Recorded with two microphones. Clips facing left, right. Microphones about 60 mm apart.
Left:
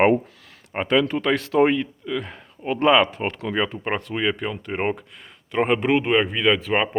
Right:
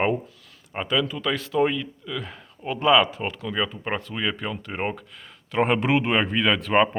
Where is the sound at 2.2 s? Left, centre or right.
Left.